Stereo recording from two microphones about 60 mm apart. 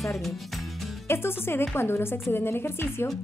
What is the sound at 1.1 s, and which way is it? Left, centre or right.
A woman's voice, left.